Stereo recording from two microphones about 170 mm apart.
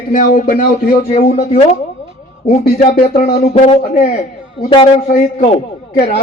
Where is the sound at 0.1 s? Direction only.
50° left (ahead or behind); by 3.8 s 35° left (ahead or behind).